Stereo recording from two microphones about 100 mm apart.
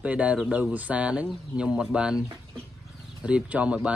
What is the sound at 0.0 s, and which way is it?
Speech, 15° right (ahead or behind).